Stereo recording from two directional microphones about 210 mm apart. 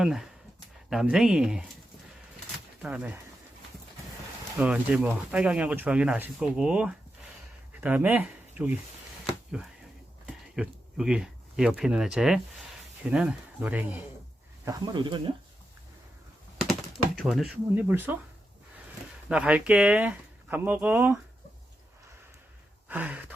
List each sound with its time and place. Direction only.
0.0 s speech: centre (ahead or behind)
2.8 s speech: 5° right (ahead or behind)
4.5 s speech: 5° right (ahead or behind)
10.2 s speech: 5° right (ahead or behind)
14.6 s speech: 20° right (ahead or behind)
17.2 s speech: centre (ahead or behind)
19.3 s speech: 5° right (ahead or behind)
22.9 s a sound: 5° right (ahead or behind)